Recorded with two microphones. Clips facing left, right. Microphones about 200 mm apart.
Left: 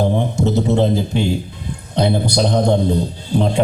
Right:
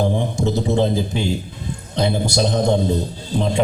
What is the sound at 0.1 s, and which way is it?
Music, 60° left (ahead or behind).